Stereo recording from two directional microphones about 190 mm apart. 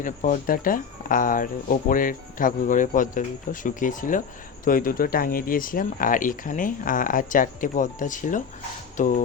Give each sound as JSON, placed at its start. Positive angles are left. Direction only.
{"t": 0.0, "sound": "speech", "side_deg": 45}